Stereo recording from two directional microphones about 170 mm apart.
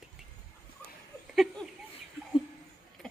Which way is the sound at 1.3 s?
Centre (ahead or behind).